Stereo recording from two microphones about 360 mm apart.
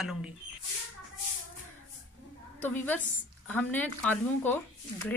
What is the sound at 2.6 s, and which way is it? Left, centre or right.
Speech, centre.